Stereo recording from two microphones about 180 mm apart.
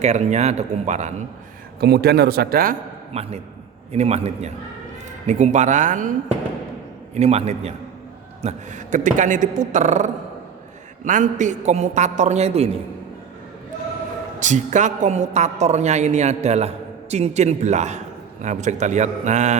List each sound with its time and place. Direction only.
0.0 s a woman's voice: 40° right (ahead or behind)
1.8 s a man's voice: 65° right (ahead or behind)
3.1 s a woman's voice: 35° right (ahead or behind)
14.3 s a woman's voice: 40° right (ahead or behind)